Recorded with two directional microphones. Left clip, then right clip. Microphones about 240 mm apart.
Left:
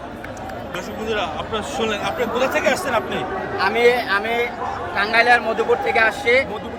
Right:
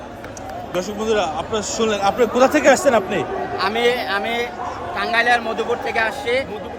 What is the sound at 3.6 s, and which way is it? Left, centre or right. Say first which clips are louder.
A man's voice: left 3 dB; centre.